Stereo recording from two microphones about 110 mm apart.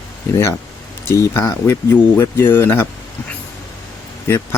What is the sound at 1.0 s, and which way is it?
Speech, 25° left (ahead or behind).